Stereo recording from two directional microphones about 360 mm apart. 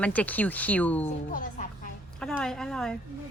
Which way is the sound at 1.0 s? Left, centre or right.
Left.